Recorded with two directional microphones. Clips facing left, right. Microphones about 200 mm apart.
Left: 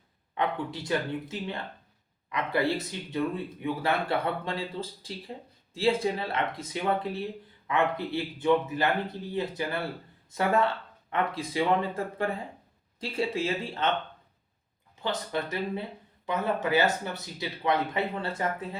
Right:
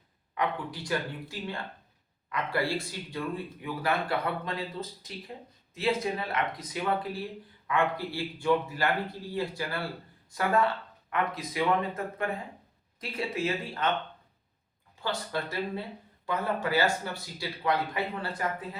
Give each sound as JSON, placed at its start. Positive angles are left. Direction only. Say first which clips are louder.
{"t": 0.3, "sound": "speech", "louder": "left 2 dB", "side_deg": 25}
{"t": 15.0, "sound": "speech", "louder": "left 2 dB", "side_deg": 20}